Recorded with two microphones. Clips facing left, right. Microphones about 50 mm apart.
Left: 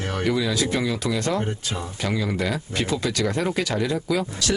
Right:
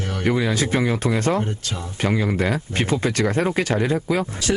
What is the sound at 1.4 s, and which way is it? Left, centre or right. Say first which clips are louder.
Speech: even; centre.